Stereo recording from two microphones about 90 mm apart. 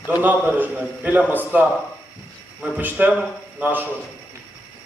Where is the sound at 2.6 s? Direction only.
10° right (ahead or behind).